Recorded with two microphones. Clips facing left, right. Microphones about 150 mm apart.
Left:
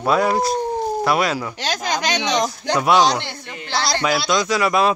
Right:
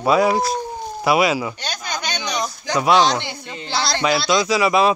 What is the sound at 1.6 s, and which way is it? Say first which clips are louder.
Speech: left 5 dB; 90° left.